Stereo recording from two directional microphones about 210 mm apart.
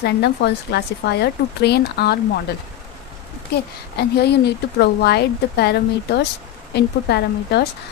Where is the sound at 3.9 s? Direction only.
50° left (ahead or behind).